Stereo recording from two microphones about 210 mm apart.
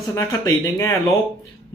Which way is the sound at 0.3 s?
15° left (ahead or behind).